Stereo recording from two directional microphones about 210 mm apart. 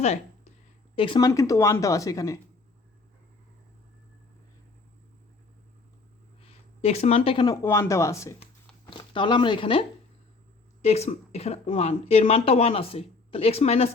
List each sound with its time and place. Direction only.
0.9 s a woman's voice: 25° left (ahead or behind)
6.4 s speech: 30° left (ahead or behind)
10.8 s speech: 30° left (ahead or behind)